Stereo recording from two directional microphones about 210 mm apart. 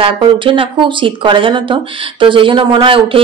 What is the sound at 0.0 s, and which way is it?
Speech, 25° right (ahead or behind).